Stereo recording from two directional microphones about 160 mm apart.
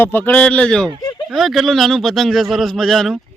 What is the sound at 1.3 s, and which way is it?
A man's voice, centre (ahead or behind).